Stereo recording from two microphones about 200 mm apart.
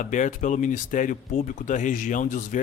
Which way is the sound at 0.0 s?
40° left (ahead or behind).